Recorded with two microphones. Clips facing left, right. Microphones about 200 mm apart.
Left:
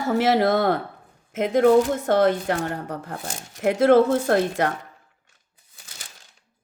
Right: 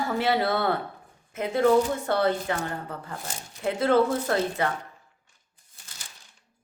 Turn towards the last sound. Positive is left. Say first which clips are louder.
# left 5 dB
turn(degrees=75)  # may be behind; listen again after turning